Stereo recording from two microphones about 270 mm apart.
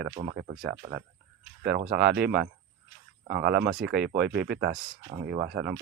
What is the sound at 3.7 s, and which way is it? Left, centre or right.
Speech, right.